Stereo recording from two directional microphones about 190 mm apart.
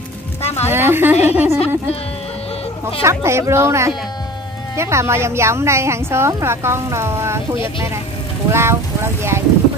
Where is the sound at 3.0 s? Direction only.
15° right (ahead or behind).